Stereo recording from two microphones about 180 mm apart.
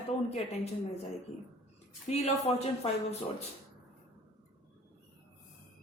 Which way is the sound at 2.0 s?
40° left (ahead or behind).